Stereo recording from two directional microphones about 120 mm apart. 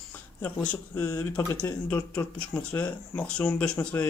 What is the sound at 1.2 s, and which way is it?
Speech, 15° left (ahead or behind).